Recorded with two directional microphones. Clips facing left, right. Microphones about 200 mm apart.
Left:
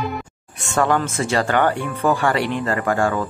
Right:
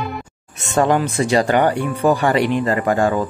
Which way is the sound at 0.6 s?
20° right (ahead or behind).